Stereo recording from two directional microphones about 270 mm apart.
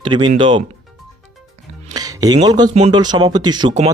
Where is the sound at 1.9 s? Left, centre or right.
Centre.